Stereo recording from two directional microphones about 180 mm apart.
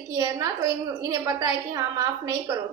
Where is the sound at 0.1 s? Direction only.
20° right (ahead or behind).